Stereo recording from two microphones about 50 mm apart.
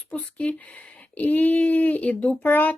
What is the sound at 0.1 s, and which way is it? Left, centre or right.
Speech, left.